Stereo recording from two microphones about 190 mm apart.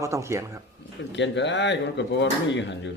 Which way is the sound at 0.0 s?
15° right (ahead or behind).